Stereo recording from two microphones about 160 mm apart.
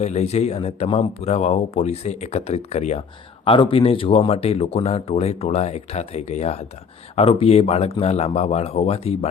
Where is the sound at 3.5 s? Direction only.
35° left (ahead or behind).